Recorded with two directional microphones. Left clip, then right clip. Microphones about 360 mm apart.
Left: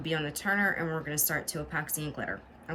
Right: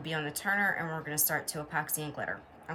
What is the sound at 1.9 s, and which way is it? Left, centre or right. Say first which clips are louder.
Speech: left 1 dB; right.